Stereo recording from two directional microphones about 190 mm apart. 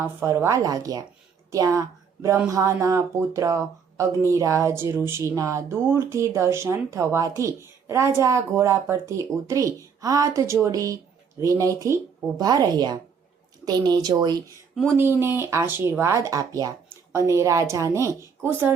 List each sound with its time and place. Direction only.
0.0 s a woman's voice: 10° right (ahead or behind)
14.8 s speech: 10° right (ahead or behind)